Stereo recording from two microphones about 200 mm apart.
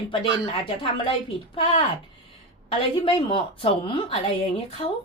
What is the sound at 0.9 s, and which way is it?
Speech, 25° left (ahead or behind).